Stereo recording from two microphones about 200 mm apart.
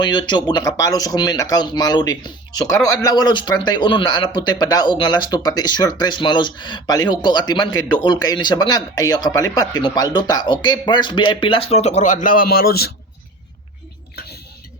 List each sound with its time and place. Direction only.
0.0 s speech: 20° left (ahead or behind); by 12.9 s 50° left (ahead or behind)